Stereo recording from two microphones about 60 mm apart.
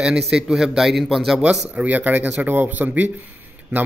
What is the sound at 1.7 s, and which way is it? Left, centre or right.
A man's voice, right.